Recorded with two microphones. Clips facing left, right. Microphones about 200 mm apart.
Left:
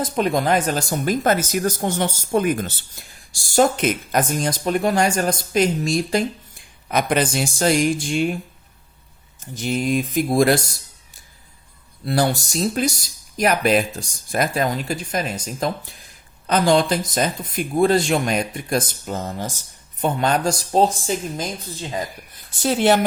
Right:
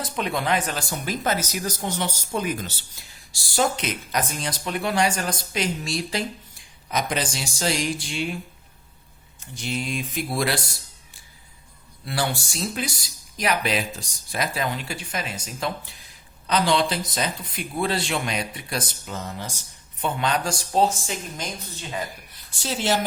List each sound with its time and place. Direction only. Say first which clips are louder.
0.0 s speech: left 7 dB; 40° left (ahead or behind)
9.6 s speech: left 8 dB; 45° left (ahead or behind)
12.0 s speech: left 7 dB; 40° left (ahead or behind)
22.6 s speech: left 8 dB; 55° left (ahead or behind)